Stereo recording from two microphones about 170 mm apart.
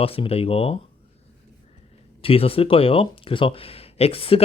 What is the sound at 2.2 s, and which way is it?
Speech, 35° left (ahead or behind).